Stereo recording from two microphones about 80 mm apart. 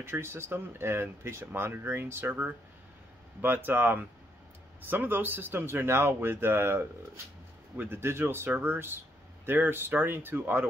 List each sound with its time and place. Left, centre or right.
0.0 s speech: right